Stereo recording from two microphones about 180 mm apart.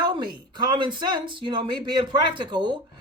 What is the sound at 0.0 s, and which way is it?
Speech, 25° right (ahead or behind).